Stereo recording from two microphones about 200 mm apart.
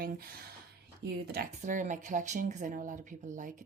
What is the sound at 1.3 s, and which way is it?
Speech, 40° right (ahead or behind).